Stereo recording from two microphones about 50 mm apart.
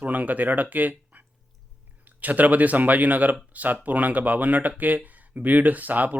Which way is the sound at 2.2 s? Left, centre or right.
Right.